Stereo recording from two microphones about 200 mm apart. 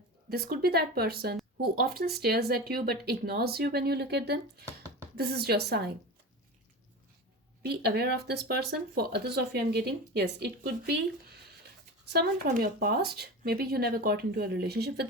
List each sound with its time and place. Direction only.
0.3 s speech: 50° right (ahead or behind)
7.7 s speech: 55° right (ahead or behind)
12.0 s speech: 50° right (ahead or behind)